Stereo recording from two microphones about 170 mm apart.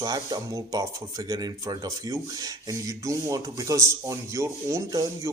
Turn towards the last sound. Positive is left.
turn(degrees=-20)  # may be behind; listen again after turning